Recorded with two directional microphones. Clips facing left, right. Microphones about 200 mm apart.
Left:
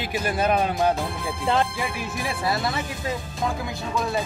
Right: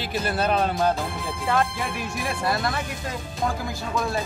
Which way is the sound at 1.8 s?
Centre (ahead or behind).